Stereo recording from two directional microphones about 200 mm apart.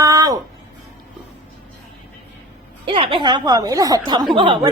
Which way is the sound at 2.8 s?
25° right (ahead or behind).